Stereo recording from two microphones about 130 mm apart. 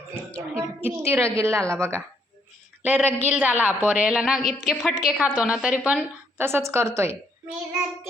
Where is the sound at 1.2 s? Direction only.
20° right (ahead or behind).